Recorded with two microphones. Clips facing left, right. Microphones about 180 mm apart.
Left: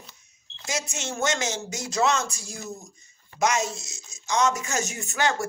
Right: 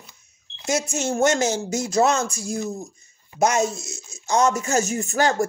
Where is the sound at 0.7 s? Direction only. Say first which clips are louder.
Right 8 dB; 55° right (ahead or behind).